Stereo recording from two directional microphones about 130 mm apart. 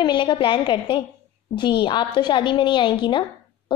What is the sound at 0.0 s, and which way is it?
A woman's voice, 35° left (ahead or behind).